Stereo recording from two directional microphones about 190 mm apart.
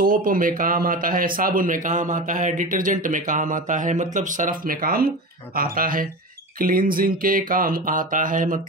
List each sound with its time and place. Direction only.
0.0 s speech: 45° right (ahead or behind)